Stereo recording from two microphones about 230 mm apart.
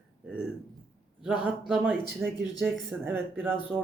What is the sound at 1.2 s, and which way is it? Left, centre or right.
Speech, centre.